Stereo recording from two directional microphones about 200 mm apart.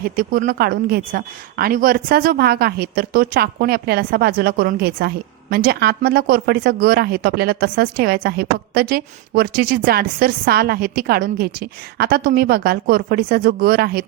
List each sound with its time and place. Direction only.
0.0 s a woman's voice: 50° right (ahead or behind)